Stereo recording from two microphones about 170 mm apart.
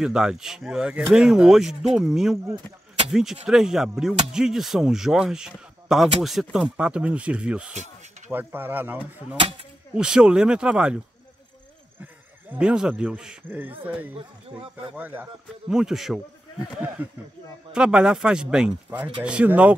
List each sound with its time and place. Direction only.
0.0 s speech: 5° right (ahead or behind)
2.3 s speech: 15° right (ahead or behind)
3.1 s speech: 5° right (ahead or behind)
12.0 s speech: 5° right (ahead or behind)